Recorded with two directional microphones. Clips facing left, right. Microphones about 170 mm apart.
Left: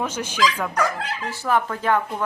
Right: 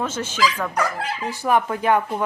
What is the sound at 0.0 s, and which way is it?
Speech, 15° left (ahead or behind).